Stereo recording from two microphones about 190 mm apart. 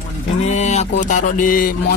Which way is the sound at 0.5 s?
35° left (ahead or behind).